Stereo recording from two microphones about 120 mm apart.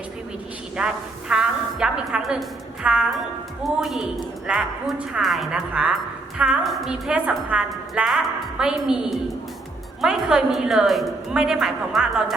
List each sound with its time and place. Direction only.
0.8 s a woman's voice: 5° right (ahead or behind)
1.3 s a sound: 5° right (ahead or behind)
2.8 s a woman's voice: 10° right (ahead or behind)